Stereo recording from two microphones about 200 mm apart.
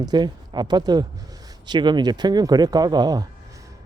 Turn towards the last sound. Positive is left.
turn(degrees=-20)  # may be behind; listen again after turning